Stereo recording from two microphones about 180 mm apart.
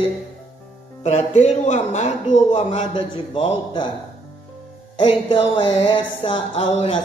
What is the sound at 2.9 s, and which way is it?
Speech, 25° left (ahead or behind).